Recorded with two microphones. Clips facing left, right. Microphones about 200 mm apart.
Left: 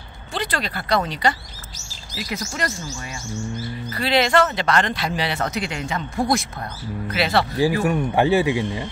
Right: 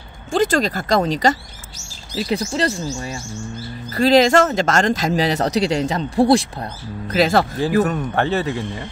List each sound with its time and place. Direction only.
0.3 s speech: 45° right (ahead or behind)
2.2 s speech: 30° right (ahead or behind)
7.8 s speech: 10° left (ahead or behind)